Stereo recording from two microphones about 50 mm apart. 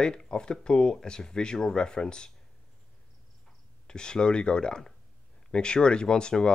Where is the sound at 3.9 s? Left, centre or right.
Centre.